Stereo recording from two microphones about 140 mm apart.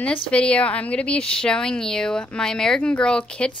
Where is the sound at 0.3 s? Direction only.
10° left (ahead or behind).